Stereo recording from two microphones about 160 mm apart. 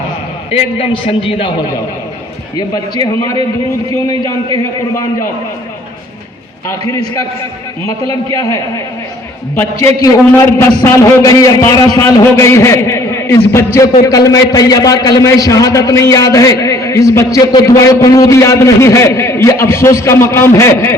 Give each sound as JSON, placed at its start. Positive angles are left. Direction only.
{"t": 0.5, "sound": "a man's voice", "side_deg": 35}
{"t": 2.6, "sound": "a man's voice", "side_deg": 25}
{"t": 4.5, "sound": "a man's voice", "side_deg": 20}
{"t": 8.3, "sound": "a man's voice", "side_deg": 20}